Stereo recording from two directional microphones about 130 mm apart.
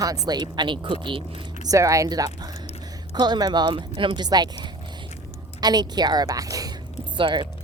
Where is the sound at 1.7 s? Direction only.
25° right (ahead or behind).